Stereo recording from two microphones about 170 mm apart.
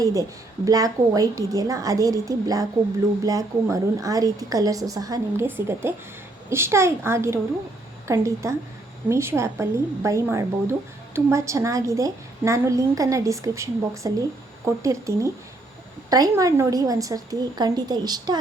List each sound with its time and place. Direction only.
0.0 s a woman's voice: 20° right (ahead or behind)